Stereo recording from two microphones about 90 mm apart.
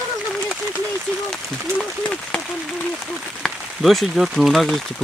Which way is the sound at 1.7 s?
15° left (ahead or behind).